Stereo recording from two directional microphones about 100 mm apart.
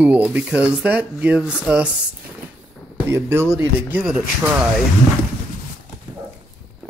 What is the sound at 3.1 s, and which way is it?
Speech, 25° right (ahead or behind).